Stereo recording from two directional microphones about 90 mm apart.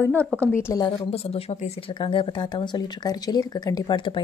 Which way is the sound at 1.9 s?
70° left (ahead or behind).